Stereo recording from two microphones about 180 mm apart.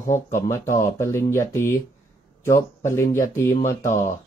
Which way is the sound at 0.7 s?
45° left (ahead or behind).